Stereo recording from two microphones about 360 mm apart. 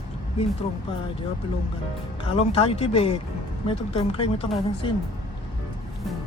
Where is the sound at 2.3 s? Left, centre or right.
Centre.